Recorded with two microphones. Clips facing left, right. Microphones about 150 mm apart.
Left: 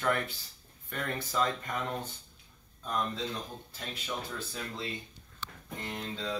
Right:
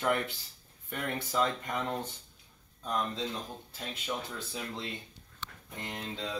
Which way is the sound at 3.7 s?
20° right (ahead or behind).